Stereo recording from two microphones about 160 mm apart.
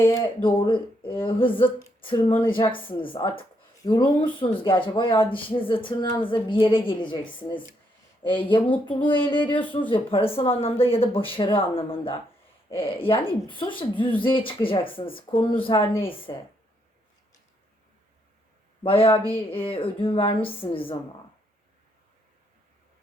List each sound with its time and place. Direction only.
0.4 s speech: 30° left (ahead or behind)
18.8 s speech: 35° left (ahead or behind)